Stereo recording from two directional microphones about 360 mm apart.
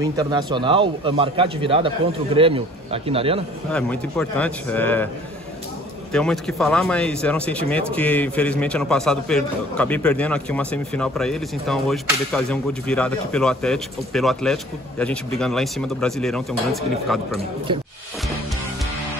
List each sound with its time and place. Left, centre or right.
0.0 s a man's voice: centre
3.7 s speech: centre
6.1 s speech: centre
17.7 s a man's voice: centre